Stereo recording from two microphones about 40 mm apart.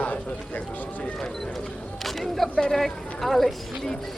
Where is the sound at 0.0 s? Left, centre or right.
Left.